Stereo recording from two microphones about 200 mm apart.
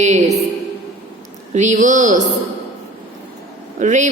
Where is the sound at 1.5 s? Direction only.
35° right (ahead or behind).